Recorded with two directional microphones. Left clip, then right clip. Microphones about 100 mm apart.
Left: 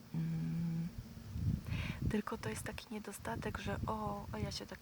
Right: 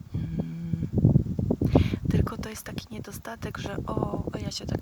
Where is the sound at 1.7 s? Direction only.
40° right (ahead or behind).